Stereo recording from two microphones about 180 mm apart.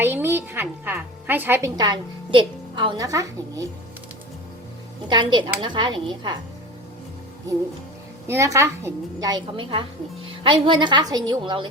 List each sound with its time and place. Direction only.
0.0 s a woman's voice: 10° right (ahead or behind)
5.0 s a woman's voice: 25° right (ahead or behind)
8.3 s a woman's voice: 15° right (ahead or behind)